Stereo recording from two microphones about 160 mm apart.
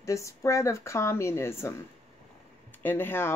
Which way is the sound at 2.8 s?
15° left (ahead or behind).